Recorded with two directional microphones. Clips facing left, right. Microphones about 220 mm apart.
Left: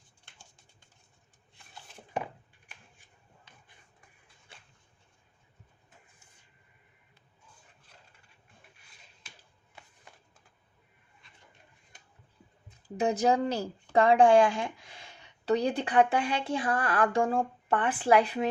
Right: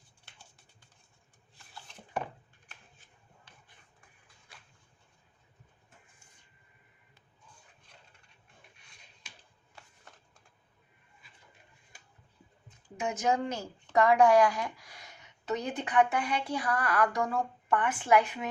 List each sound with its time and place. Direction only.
8.8 s finger snapping: 5° left (ahead or behind)
13.0 s speech: 35° left (ahead or behind)